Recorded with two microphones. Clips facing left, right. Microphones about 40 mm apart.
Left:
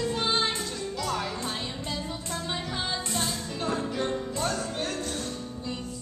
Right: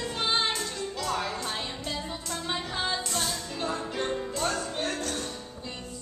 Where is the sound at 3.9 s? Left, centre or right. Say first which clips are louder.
Left 1 dB; centre.